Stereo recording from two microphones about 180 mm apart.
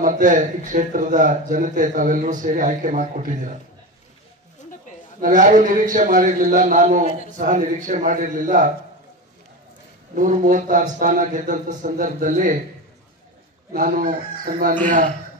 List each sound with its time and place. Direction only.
0.0 s a man's voice: 45° right (ahead or behind)
5.2 s a man's voice: 45° right (ahead or behind)
10.1 s a man's voice: 45° right (ahead or behind)
13.7 s a man's voice: 50° right (ahead or behind)